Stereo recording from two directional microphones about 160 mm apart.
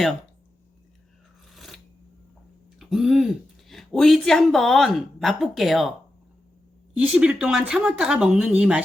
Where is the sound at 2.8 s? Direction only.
Centre (ahead or behind).